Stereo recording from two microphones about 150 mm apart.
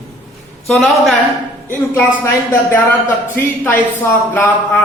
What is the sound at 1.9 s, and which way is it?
Speech, 15° left (ahead or behind).